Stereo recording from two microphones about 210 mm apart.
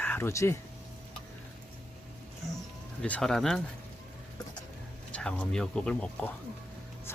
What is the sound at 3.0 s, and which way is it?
Speech, 5° left (ahead or behind).